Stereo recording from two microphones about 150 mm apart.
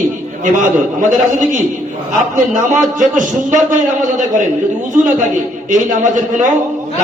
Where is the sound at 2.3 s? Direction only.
55° right (ahead or behind).